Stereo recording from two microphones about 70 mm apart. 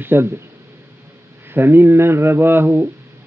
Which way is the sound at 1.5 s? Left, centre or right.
Right.